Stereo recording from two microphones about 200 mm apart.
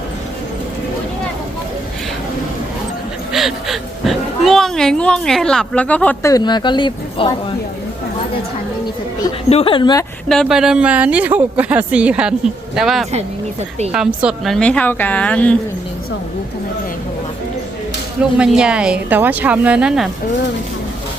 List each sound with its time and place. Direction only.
3.3 s speech: centre (ahead or behind)
6.3 s speech: 20° left (ahead or behind)
9.5 s speech: 30° left (ahead or behind)
10.2 s a man's voice: centre (ahead or behind)
18.2 s a man's voice: 5° right (ahead or behind)